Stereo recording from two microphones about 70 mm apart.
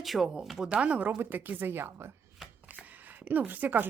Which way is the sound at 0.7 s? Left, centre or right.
Centre.